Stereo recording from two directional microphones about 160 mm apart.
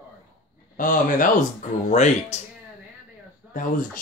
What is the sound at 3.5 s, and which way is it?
Speech, 55° left (ahead or behind).